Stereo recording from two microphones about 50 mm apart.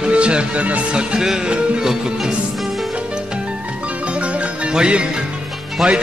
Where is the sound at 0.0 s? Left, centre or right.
Right.